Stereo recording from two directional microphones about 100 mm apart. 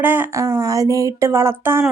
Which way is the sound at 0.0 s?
20° right (ahead or behind).